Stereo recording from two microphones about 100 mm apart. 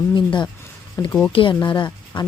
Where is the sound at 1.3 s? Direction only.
55° left (ahead or behind).